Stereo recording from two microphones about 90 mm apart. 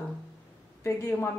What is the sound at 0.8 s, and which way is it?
Speech, 30° left (ahead or behind).